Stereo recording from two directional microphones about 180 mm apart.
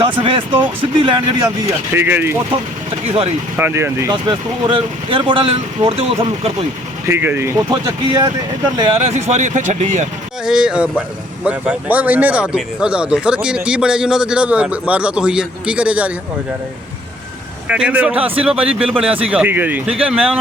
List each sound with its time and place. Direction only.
0.0 s speech: 30° right (ahead or behind)
1.9 s speech: 10° right (ahead or behind)
3.6 s speech: 15° right (ahead or behind)
4.1 s speech: 25° right (ahead or behind)
7.1 s speech: 10° right (ahead or behind)
9.0 s speech: 40° right (ahead or behind)
10.4 s speech: 5° right (ahead or behind)
17.7 s speech: 5° right (ahead or behind)